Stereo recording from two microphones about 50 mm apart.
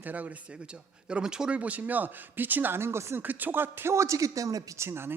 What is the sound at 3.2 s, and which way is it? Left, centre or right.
Speech, right.